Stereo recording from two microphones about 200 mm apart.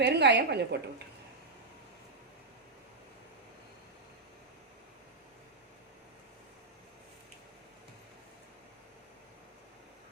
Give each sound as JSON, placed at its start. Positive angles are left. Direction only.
{"t": 0.0, "sound": "a woman's voice", "side_deg": -60}